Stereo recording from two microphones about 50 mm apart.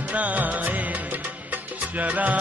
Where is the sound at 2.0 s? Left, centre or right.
Right.